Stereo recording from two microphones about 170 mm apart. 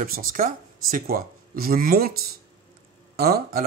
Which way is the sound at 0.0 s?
55° right (ahead or behind).